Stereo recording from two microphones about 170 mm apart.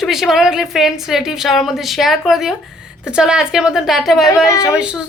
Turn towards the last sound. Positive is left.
turn(degrees=-5)  # may be behind; listen again after turning